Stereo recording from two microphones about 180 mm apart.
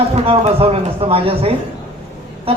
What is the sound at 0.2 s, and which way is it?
A man's voice, 35° right (ahead or behind).